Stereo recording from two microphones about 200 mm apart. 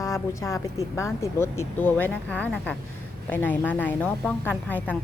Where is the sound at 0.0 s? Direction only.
15° left (ahead or behind).